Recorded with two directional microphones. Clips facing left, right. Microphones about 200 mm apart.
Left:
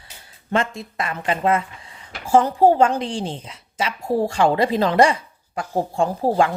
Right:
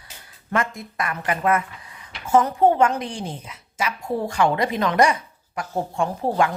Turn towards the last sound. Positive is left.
turn(degrees=30)  # may be behind; listen again after turning